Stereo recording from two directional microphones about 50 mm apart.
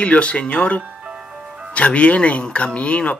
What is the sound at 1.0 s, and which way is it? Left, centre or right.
Music, right.